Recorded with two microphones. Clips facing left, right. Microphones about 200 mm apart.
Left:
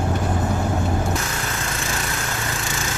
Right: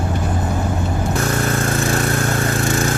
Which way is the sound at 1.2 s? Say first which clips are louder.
Right 9 dB; 50° right (ahead or behind).